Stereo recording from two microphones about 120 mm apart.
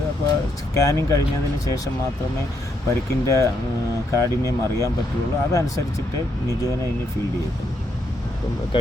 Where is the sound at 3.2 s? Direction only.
25° left (ahead or behind).